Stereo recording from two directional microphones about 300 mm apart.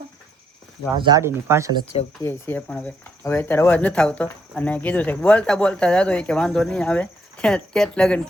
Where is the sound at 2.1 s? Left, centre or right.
Centre.